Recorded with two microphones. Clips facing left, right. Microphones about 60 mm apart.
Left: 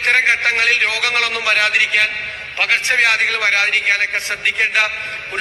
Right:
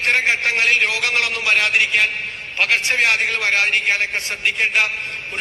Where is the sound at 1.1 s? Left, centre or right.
Left.